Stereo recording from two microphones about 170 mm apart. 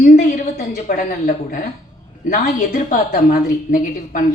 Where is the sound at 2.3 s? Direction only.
50° left (ahead or behind).